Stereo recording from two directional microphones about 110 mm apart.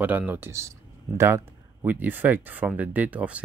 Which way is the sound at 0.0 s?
15° right (ahead or behind).